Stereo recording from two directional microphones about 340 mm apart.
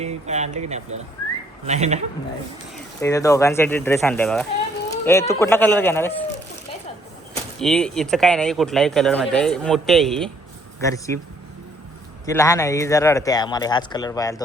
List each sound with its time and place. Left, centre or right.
0.0 s speech: centre
2.7 s speech: centre
4.9 s a sound: centre
5.3 s speech: centre
7.6 s speech: centre
12.2 s speech: centre